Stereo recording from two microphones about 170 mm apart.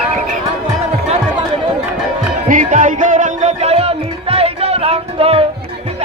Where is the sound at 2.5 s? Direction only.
50° right (ahead or behind); by 5.5 s 35° right (ahead or behind).